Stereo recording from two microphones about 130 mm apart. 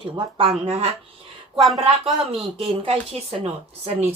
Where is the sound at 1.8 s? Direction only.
50° right (ahead or behind).